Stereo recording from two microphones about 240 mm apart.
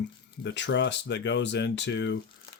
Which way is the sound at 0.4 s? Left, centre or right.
Left.